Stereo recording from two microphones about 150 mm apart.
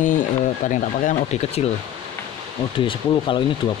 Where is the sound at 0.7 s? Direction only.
50° left (ahead or behind).